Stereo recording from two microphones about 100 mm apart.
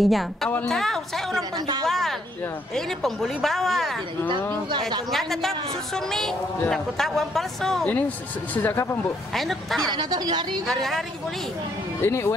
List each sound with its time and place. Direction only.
0.0 s a man's voice: centre (ahead or behind)
5.1 s a man's voice: centre (ahead or behind)
8.6 s speech: 20° left (ahead or behind)
9.3 s a man's voice: centre (ahead or behind)
9.9 s a woman's voice: 45° right (ahead or behind)
10.7 s a man's voice: 5° left (ahead or behind)
12.0 s speech: 25° left (ahead or behind)